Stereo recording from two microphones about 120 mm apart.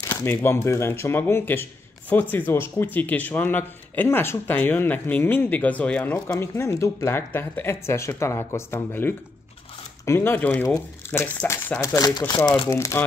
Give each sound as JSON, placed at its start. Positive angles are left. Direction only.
{"t": 0.0, "sound": "speech", "side_deg": 20}
{"t": 6.2, "sound": "speech", "side_deg": 20}